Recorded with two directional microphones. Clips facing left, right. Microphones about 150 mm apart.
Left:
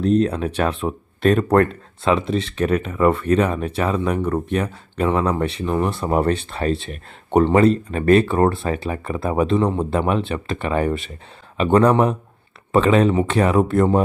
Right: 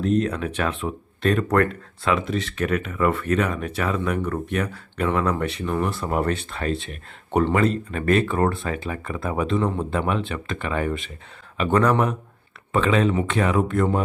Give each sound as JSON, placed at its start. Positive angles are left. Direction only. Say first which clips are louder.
{"t": 0.0, "sound": "speech", "louder": "left 4 dB", "side_deg": 35}
{"t": 1.5, "sound": "speech", "louder": "left 4 dB", "side_deg": 30}